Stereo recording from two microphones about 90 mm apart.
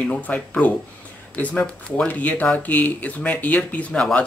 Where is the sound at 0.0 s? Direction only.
15° left (ahead or behind).